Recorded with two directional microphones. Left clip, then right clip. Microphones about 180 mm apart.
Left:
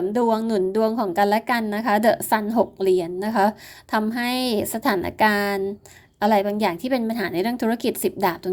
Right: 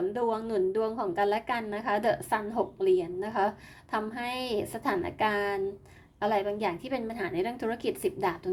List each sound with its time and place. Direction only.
0.1 s a woman's voice: 40° left (ahead or behind)